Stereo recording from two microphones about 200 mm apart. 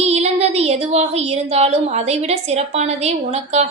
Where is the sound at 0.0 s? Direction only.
30° right (ahead or behind).